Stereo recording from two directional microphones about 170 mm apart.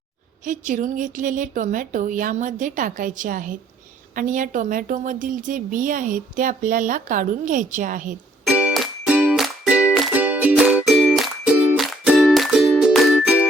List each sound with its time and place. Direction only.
0.4 s a woman's voice: 50° right (ahead or behind)
8.4 s music: 5° right (ahead or behind)